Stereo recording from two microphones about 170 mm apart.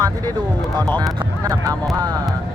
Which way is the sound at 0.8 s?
25° right (ahead or behind).